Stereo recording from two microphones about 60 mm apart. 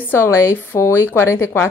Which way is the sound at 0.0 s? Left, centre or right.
Left.